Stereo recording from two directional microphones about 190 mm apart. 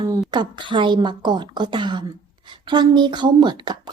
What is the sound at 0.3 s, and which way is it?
Speech, 25° right (ahead or behind).